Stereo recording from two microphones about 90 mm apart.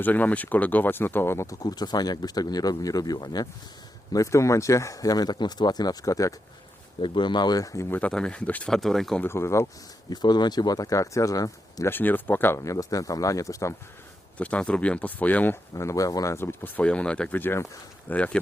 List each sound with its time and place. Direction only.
0.0 s speech: 20° left (ahead or behind)
1.6 s speech: 50° left (ahead or behind)
4.1 s speech: 35° left (ahead or behind)
7.0 s speech: 65° left (ahead or behind); by 7.9 s 40° left (ahead or behind)
7.9 s speech: 20° left (ahead or behind)
8.7 s speech: 5° left (ahead or behind)
9.2 s speech: 30° left (ahead or behind)
10.1 s speech: 50° left (ahead or behind)
11.9 s speech: 20° left (ahead or behind)
12.5 s speech: 35° left (ahead or behind)
14.3 s speech: 15° left (ahead or behind)
15.7 s speech: 35° left (ahead or behind); by 18.3 s 15° left (ahead or behind)